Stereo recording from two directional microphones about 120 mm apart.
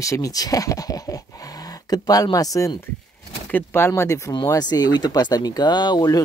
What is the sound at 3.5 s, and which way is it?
Speech, 15° left (ahead or behind).